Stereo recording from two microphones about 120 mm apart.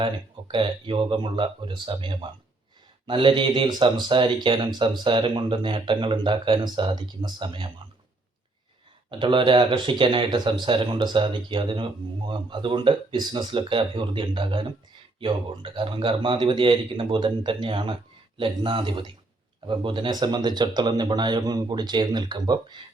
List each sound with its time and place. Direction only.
0.0 s speech: 45° right (ahead or behind)
9.0 s speech: 40° right (ahead or behind)